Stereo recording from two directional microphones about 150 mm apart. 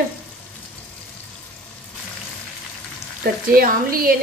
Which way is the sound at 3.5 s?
75° right (ahead or behind).